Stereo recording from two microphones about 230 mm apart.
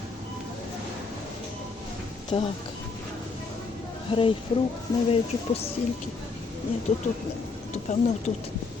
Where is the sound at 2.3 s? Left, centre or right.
Left.